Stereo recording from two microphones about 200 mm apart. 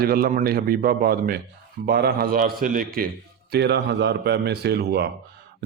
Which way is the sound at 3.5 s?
55° right (ahead or behind).